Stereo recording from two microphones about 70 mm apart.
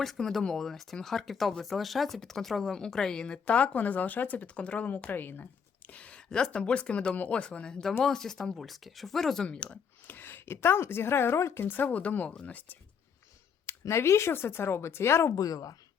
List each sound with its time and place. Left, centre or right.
0.0 s speech: centre; by 5.5 s left
5.9 s speech: centre
10.1 s speech: left
11.6 s speech: left
13.7 s speech: left
15.4 s a woman's voice: left